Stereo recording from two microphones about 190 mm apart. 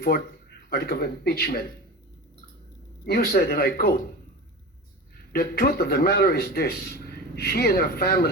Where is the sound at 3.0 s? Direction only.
55° left (ahead or behind).